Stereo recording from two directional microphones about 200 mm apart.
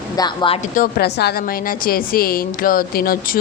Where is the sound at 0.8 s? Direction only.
55° left (ahead or behind).